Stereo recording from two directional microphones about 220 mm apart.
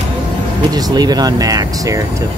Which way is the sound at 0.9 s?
15° right (ahead or behind).